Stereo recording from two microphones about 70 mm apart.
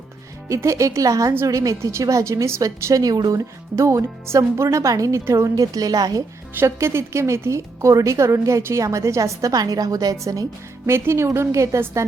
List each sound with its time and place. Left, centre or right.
0.4 s a woman's voice: right
6.7 s a woman's voice: right
10.8 s a woman's voice: right